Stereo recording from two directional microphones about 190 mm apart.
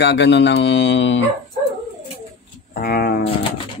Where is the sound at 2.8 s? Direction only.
55° left (ahead or behind).